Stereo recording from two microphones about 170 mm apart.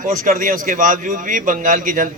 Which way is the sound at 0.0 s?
50° right (ahead or behind).